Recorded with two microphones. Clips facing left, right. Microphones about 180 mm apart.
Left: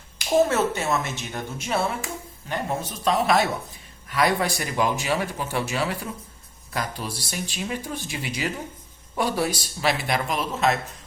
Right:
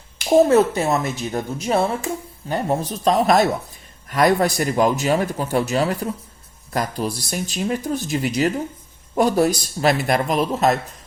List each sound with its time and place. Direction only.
0.3 s speech: 35° right (ahead or behind)